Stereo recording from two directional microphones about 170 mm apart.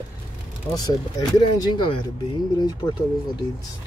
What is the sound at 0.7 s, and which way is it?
Speech, 20° left (ahead or behind).